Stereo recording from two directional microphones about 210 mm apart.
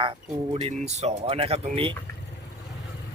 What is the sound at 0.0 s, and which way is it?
Speech, 25° right (ahead or behind).